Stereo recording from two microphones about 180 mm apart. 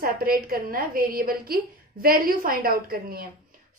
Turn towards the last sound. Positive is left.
turn(degrees=-55)  # may be behind; listen again after turning